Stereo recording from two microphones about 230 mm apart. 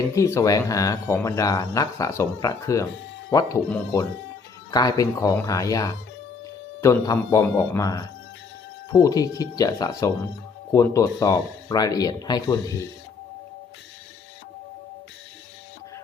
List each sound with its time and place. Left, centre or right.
0.2 s speech: centre